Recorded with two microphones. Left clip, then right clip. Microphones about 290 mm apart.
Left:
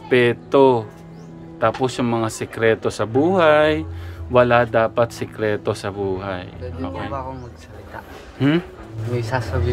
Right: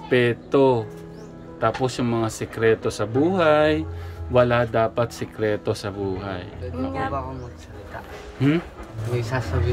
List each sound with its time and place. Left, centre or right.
0.1 s speech: centre
8.4 s speech: centre